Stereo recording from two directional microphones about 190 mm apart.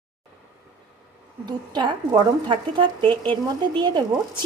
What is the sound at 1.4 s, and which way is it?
Speech, 25° right (ahead or behind).